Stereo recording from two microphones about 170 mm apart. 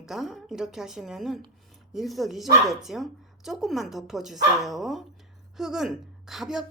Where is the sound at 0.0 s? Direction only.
Centre (ahead or behind).